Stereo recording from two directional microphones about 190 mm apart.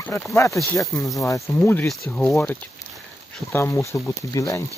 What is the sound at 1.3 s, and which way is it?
Speech, 15° left (ahead or behind).